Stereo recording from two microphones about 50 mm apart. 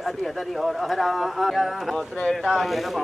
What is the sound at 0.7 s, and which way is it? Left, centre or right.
Speech, centre.